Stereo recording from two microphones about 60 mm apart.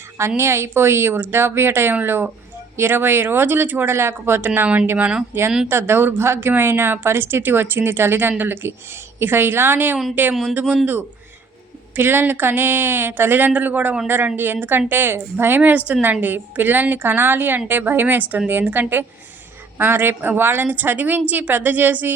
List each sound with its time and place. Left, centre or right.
0.2 s a woman's voice: right
4.4 s speech: right
5.6 s a woman's voice: right
11.9 s a woman's voice: right